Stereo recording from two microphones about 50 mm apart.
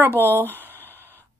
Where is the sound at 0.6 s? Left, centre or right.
Left.